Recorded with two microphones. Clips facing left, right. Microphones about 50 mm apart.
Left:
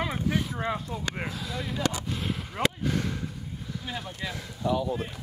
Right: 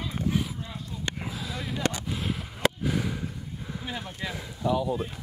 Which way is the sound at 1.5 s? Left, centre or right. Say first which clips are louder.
Even; centre.